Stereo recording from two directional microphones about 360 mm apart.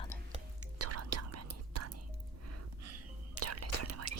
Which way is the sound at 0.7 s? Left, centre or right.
Right.